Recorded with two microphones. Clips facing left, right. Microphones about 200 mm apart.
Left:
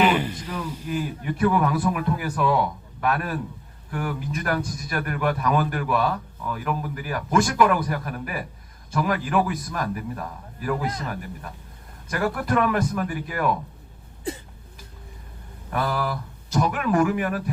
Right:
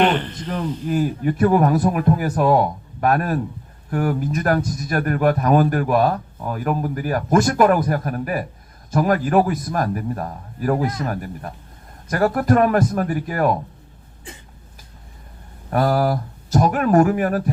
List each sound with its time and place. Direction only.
0.0 s a sound: 10° left (ahead or behind)
0.9 s a man's voice: 45° right (ahead or behind)
15.7 s speech: 40° right (ahead or behind)